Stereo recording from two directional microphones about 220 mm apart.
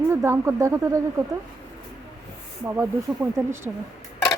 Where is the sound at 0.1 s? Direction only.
10° right (ahead or behind).